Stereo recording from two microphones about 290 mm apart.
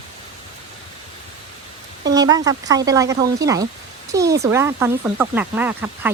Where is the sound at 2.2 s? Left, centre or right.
Centre.